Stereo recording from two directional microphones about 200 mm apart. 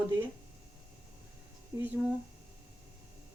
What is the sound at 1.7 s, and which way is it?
Speech, 10° right (ahead or behind).